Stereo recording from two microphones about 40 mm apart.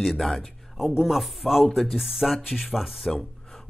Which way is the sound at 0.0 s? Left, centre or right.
Centre.